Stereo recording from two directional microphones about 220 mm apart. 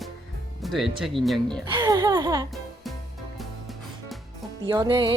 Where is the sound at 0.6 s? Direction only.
Centre (ahead or behind).